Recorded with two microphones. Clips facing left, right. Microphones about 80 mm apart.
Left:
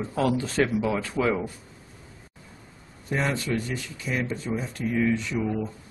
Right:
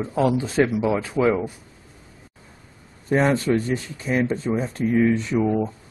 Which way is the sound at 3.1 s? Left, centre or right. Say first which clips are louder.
Right 8 dB; right.